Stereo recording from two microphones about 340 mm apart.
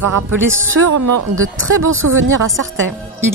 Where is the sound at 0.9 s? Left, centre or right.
Right.